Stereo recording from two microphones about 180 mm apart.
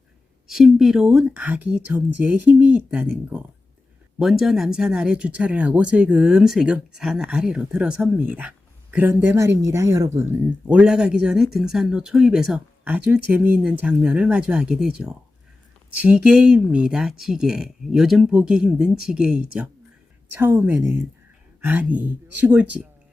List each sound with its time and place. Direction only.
0.4 s speech: centre (ahead or behind)
10.7 s speech: 5° right (ahead or behind)